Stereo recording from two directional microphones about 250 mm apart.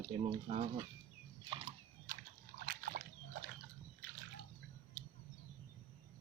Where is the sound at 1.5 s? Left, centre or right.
Right.